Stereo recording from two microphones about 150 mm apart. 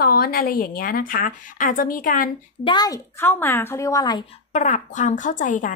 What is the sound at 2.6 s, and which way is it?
Speech, 25° left (ahead or behind).